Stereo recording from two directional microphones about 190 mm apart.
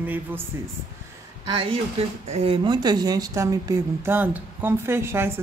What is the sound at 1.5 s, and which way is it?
Speech, 25° right (ahead or behind).